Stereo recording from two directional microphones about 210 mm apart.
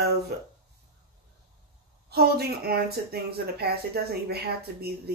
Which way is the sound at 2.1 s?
50° right (ahead or behind).